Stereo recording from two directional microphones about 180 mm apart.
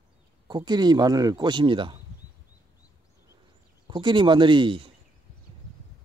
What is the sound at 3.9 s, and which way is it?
Speech, 25° right (ahead or behind).